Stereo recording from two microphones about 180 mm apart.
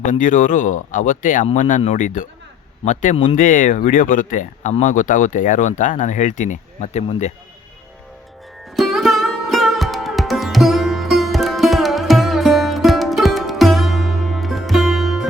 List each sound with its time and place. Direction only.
0.0 s speech: 45° left (ahead or behind)
8.7 s music: centre (ahead or behind)